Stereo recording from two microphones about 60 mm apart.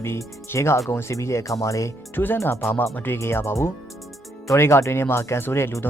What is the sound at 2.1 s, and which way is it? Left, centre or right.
Speech, left.